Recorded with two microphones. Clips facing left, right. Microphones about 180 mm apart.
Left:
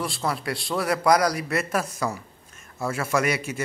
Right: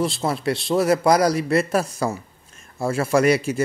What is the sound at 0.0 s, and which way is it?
A man's voice, 25° right (ahead or behind).